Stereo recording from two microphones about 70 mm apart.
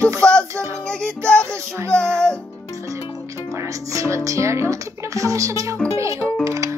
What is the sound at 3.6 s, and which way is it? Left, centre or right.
Speech, right.